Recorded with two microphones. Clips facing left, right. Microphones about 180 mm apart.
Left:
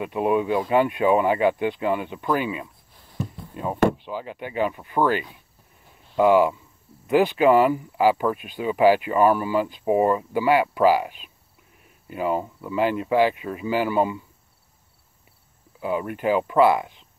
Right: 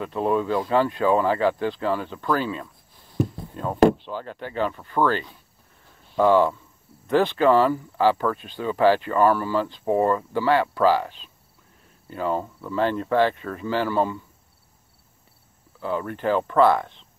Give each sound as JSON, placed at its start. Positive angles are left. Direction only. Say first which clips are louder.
{"t": 0.0, "sound": "speech", "louder": "left 1 dB", "side_deg": 15}
{"t": 15.8, "sound": "speech", "louder": "left 1 dB", "side_deg": 10}